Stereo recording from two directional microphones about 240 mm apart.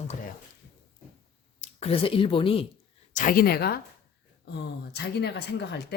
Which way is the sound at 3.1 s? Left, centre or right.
Left.